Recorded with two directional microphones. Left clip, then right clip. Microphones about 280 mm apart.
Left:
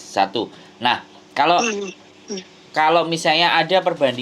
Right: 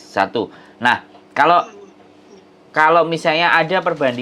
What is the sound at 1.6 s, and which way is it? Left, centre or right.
Speech, left.